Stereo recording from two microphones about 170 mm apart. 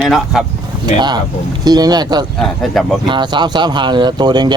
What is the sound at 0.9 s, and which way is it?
Speech, 25° right (ahead or behind).